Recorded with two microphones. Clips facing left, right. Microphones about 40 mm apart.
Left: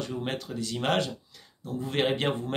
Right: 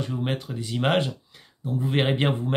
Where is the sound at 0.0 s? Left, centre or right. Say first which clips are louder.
Right 4 dB; centre.